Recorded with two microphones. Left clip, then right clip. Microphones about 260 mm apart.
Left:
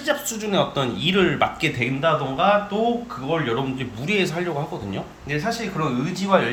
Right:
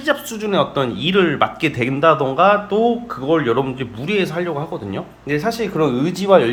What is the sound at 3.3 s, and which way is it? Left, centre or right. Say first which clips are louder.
Speech: right 7 dB; right.